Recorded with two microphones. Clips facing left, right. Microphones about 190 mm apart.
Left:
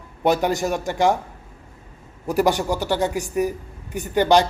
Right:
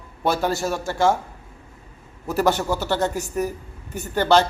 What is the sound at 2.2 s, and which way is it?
A man's voice, 15° left (ahead or behind).